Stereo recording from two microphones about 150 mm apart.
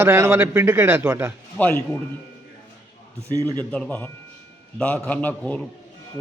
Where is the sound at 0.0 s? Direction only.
15° right (ahead or behind).